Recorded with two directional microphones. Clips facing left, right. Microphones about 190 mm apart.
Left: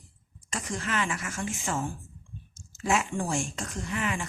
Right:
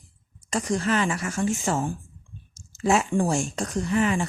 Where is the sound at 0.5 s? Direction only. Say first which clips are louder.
Right 8 dB; 35° right (ahead or behind).